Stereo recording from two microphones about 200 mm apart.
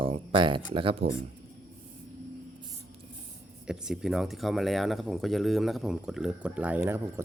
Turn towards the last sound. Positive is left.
turn(degrees=-10)  # may be behind; listen again after turning